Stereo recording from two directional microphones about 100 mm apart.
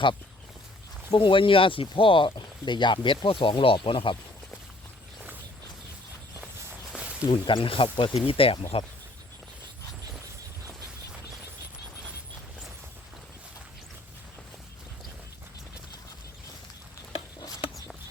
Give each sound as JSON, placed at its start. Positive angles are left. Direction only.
{"t": 1.1, "sound": "speech", "side_deg": 55}
{"t": 6.9, "sound": "a sound", "side_deg": -10}
{"t": 7.3, "sound": "speech", "side_deg": 55}